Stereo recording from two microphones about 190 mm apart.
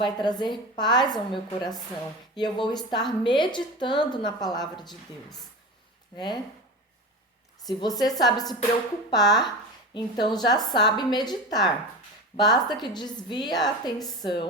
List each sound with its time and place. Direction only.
0.0 s a woman's voice: 25° left (ahead or behind)
6.1 s a woman's voice: 25° left (ahead or behind)
7.8 s a woman's voice: 20° left (ahead or behind)